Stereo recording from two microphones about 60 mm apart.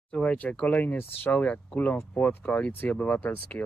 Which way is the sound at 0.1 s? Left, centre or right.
Left.